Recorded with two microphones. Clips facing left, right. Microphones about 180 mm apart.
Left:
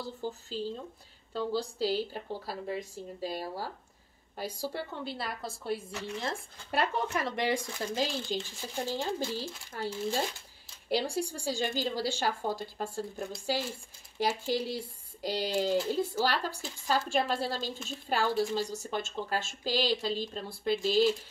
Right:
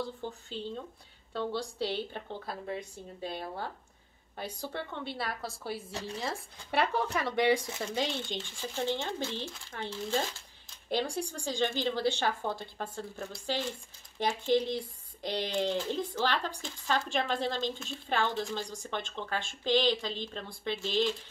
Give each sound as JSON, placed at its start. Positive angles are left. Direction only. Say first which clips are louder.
{"t": 0.0, "sound": "a woman's voice", "louder": "even", "side_deg": 5}
{"t": 5.9, "sound": "speech", "louder": "even", "side_deg": -30}
{"t": 6.1, "sound": "a woman's voice", "louder": "left 2 dB", "side_deg": 0}